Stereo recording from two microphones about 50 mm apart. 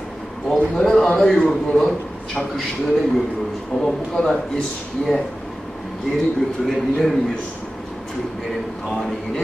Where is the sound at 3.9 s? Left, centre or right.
Centre.